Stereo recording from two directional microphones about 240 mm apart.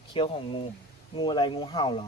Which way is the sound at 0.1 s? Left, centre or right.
Left.